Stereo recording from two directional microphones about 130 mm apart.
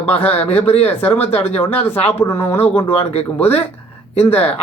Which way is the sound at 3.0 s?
50° left (ahead or behind).